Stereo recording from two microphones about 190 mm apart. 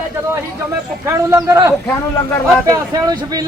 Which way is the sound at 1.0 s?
15° right (ahead or behind).